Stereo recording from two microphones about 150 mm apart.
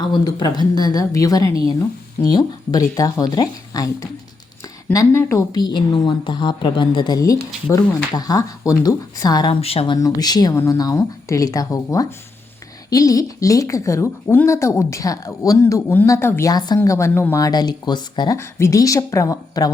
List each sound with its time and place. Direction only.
0.1 s a woman's voice: 30° left (ahead or behind)
9.6 s a woman's voice: 40° left (ahead or behind)
18.3 s a woman's voice: 20° left (ahead or behind)